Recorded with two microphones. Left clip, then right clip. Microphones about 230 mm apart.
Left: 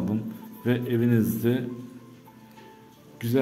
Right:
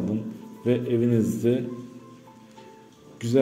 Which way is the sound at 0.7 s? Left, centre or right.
Centre.